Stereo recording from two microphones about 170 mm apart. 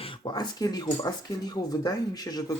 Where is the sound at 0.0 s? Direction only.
30° left (ahead or behind).